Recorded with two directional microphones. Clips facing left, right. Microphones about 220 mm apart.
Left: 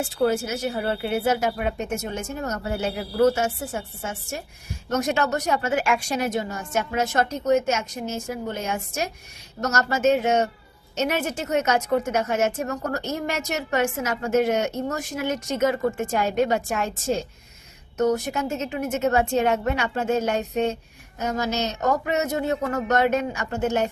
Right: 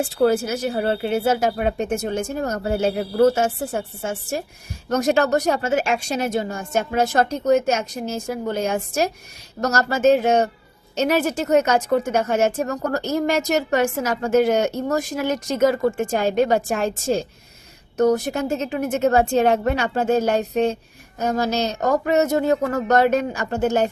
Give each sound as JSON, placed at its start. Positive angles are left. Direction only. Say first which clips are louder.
{"t": 0.0, "sound": "a woman's voice", "louder": "right 4 dB", "side_deg": -35}
{"t": 18.3, "sound": "a woman's voice", "louder": "right 4 dB", "side_deg": -35}